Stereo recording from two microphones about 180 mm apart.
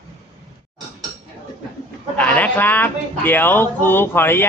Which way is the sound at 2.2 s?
10° left (ahead or behind).